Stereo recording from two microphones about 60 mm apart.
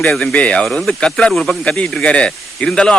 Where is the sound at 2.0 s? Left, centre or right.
Centre.